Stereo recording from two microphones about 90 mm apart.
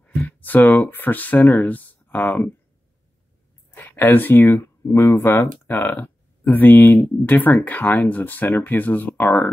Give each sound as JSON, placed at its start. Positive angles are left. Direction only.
{"t": 0.0, "sound": "speech", "side_deg": 15}
{"t": 3.7, "sound": "speech", "side_deg": 20}